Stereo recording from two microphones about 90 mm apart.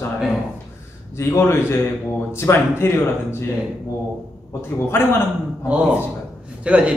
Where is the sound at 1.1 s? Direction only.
30° left (ahead or behind).